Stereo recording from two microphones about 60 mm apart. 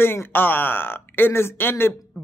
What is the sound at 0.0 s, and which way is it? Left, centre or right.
Speech, left.